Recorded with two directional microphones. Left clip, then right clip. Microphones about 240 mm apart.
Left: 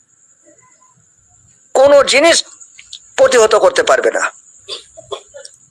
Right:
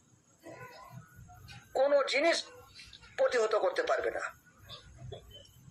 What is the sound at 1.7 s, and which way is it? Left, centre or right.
Speech, left.